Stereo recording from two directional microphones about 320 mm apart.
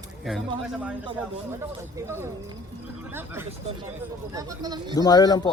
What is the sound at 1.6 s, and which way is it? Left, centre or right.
Speech, centre.